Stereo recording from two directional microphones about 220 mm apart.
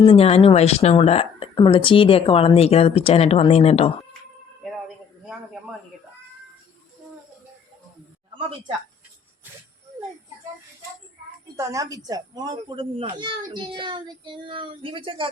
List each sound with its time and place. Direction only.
0.0 s speech: 25° left (ahead or behind)
8.4 s speech: 25° right (ahead or behind)
11.5 s speech: 15° right (ahead or behind)
13.1 s child singing: 20° right (ahead or behind)